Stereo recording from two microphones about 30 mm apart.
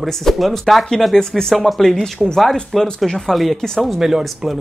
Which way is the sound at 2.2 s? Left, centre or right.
Centre.